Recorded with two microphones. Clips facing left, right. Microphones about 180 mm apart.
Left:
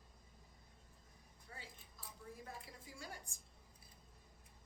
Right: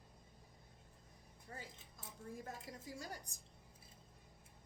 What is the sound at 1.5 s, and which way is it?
Cutlery, 45° right (ahead or behind).